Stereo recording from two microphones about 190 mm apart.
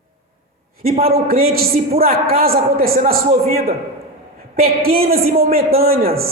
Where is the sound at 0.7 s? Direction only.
50° right (ahead or behind).